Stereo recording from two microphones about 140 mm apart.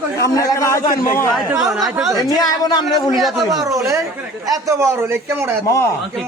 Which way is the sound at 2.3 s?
30° left (ahead or behind).